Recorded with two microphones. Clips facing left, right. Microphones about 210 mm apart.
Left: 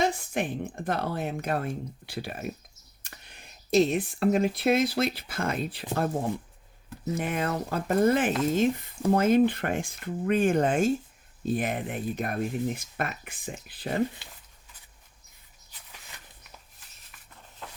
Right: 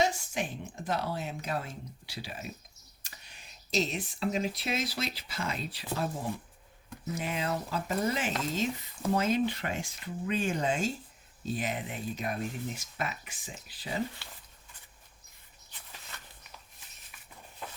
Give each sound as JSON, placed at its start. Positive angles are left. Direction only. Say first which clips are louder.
{"t": 0.0, "sound": "speech", "louder": "left 3 dB", "side_deg": 55}
{"t": 7.2, "sound": "speech", "louder": "left 4 dB", "side_deg": 55}
{"t": 14.2, "sound": "speech", "louder": "even", "side_deg": 15}
{"t": 17.6, "sound": "walk", "louder": "even", "side_deg": -10}